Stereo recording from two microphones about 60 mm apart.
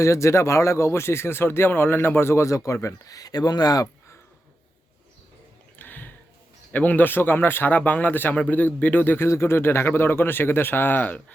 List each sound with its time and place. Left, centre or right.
0.0 s speech: left
5.8 s a sound: left
6.7 s speech: left
7.8 s a man's voice: left
9.2 s speech: left